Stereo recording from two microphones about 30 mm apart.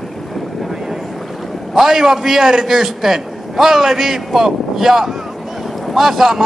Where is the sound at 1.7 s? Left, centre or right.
Centre.